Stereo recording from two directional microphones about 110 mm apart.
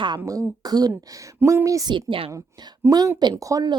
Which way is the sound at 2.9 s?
35° right (ahead or behind).